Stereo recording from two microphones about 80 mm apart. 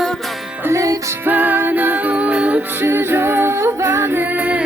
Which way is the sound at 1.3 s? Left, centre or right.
Right.